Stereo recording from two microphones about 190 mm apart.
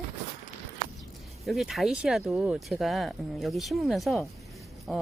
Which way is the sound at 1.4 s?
Centre (ahead or behind).